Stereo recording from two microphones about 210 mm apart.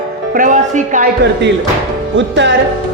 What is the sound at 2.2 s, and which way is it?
Speech, 60° right (ahead or behind).